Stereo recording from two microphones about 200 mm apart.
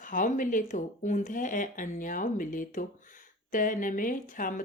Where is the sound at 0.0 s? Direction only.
40° left (ahead or behind).